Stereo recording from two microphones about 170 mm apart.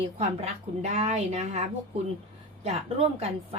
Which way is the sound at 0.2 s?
40° right (ahead or behind).